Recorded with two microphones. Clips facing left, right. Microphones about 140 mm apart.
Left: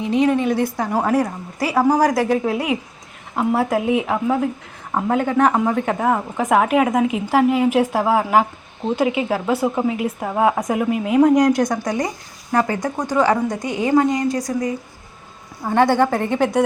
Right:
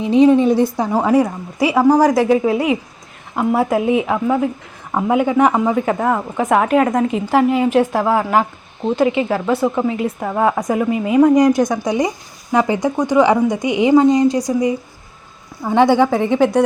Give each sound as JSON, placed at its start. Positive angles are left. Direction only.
{"t": 0.1, "sound": "a woman's voice", "side_deg": -30}
{"t": 1.0, "sound": "speech", "side_deg": -5}